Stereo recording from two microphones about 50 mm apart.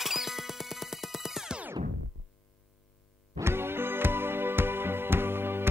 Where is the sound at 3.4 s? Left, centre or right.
Right.